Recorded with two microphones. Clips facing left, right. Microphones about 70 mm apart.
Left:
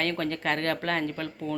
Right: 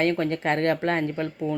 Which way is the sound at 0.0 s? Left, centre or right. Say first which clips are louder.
Right 5 dB; right.